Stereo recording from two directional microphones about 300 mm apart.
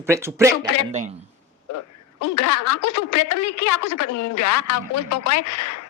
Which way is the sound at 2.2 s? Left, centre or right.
Left.